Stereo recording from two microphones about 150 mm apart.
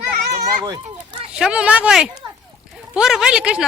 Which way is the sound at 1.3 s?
5° right (ahead or behind).